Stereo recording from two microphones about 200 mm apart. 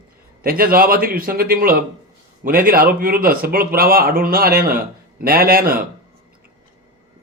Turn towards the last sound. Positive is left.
turn(degrees=-45)  # may be behind; listen again after turning